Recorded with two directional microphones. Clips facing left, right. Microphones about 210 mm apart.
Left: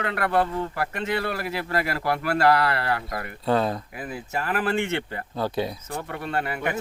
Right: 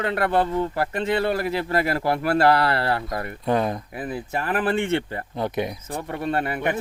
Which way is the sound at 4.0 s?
30° right (ahead or behind).